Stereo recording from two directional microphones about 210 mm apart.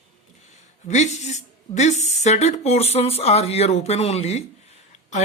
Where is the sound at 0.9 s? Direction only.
35° left (ahead or behind).